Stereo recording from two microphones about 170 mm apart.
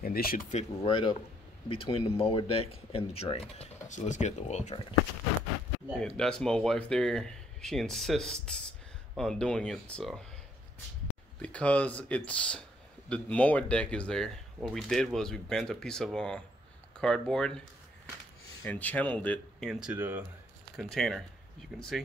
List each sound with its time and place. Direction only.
0.0 s speech: 60° left (ahead or behind)
0.8 s speech: 30° left (ahead or behind)
5.9 s speech: 5° left (ahead or behind)
11.4 s speech: 10° left (ahead or behind)
18.6 s speech: 10° left (ahead or behind)
19.7 s speech: 5° right (ahead or behind)
20.7 s speech: centre (ahead or behind)